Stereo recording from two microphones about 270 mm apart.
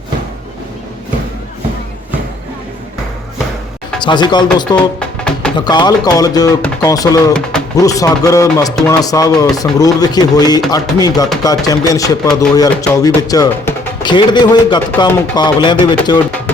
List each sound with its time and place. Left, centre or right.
4.0 s speech: centre
4.9 s music: centre
5.5 s speech: centre